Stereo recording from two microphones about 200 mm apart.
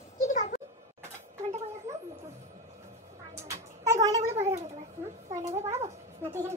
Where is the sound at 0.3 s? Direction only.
40° left (ahead or behind).